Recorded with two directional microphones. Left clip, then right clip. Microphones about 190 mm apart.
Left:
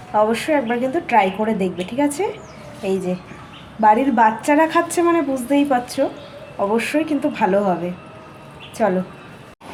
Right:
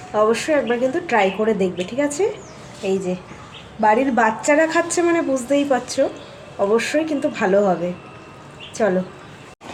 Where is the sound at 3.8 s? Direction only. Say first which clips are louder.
Left 2 dB; 10° left (ahead or behind).